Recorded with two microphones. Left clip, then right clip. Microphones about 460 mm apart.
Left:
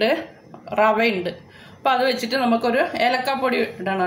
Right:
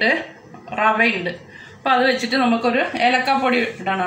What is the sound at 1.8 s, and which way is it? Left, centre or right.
A woman's voice, left.